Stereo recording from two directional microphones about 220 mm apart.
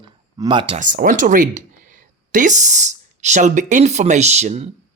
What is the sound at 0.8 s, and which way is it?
Speech, 40° right (ahead or behind).